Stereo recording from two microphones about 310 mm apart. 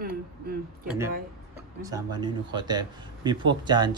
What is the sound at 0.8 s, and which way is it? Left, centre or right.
Speech, centre.